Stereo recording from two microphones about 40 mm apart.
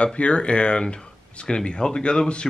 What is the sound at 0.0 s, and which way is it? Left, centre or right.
Speech, left.